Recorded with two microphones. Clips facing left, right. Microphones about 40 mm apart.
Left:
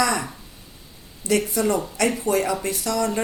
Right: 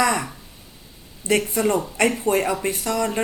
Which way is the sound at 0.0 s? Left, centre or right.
Centre.